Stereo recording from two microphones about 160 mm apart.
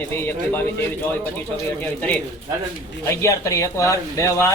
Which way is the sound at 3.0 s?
20° left (ahead or behind).